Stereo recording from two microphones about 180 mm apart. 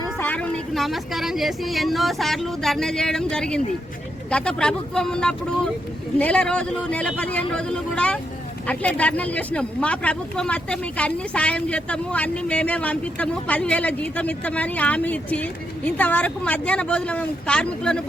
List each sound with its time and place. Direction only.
0.2 s speech: 10° left (ahead or behind)